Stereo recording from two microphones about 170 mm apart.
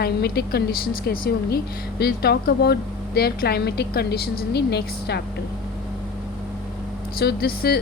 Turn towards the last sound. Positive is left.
turn(degrees=65)  # may be behind; listen again after turning